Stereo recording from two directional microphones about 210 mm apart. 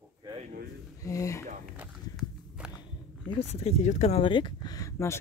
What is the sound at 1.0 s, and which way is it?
Speech, 15° left (ahead or behind).